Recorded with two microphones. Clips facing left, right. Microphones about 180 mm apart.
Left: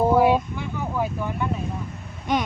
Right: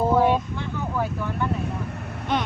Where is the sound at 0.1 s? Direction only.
10° left (ahead or behind).